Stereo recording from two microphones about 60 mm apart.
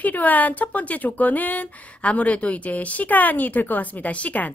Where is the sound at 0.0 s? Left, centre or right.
Left.